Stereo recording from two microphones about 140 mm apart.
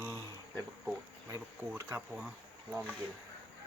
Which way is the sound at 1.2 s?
20° right (ahead or behind).